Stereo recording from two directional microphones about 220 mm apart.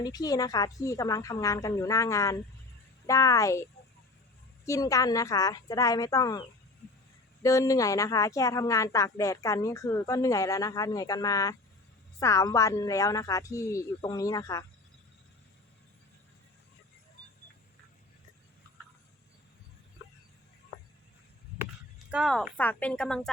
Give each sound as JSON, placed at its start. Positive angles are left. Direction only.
{"t": 0.0, "sound": "a woman's voice", "side_deg": 15}
{"t": 7.4, "sound": "a woman's voice", "side_deg": 15}
{"t": 21.6, "sound": "speech", "side_deg": -5}